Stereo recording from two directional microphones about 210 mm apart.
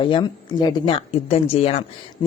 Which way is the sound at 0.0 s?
20° left (ahead or behind).